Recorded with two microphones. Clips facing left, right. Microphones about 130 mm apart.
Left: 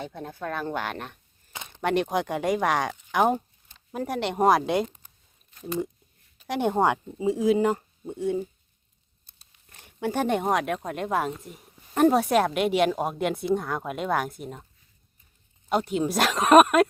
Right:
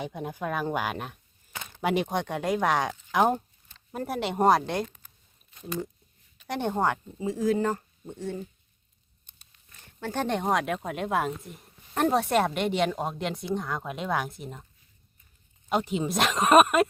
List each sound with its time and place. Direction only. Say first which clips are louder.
0.0 s speech: right 1 dB; 15° right (ahead or behind)
1.5 s a sound: even; 20° left (ahead or behind)
1.8 s speech: left 2 dB; 5° right (ahead or behind)
3.1 s a sound: left 1 dB; centre (ahead or behind)
4.0 s speech: left 1 dB; centre (ahead or behind)
6.5 s a woman's voice: left 4 dB; 10° left (ahead or behind)
9.8 s speech: left 4 dB; 10° left (ahead or behind)
15.7 s speech: left 2 dB; centre (ahead or behind)